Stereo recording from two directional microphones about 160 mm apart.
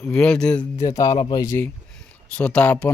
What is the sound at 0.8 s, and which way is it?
Speech, 20° left (ahead or behind).